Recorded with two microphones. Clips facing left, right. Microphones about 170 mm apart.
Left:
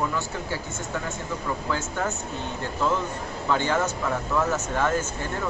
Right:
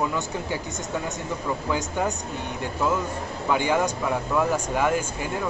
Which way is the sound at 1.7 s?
15° right (ahead or behind).